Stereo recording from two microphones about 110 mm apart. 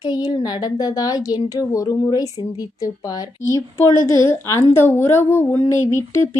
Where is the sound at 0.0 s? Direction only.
40° left (ahead or behind).